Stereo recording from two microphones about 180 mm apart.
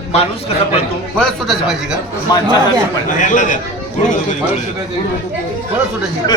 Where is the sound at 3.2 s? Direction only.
45° left (ahead or behind).